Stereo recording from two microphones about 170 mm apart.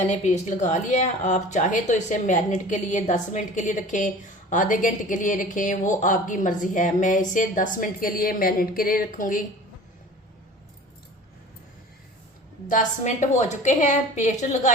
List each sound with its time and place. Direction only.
0.0 s speech: 45° left (ahead or behind)
12.6 s speech: 45° left (ahead or behind)